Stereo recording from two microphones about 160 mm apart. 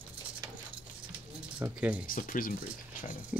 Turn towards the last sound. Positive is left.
turn(degrees=-5)  # may be behind; listen again after turning